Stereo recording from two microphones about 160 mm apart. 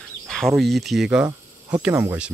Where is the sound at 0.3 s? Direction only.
Centre (ahead or behind).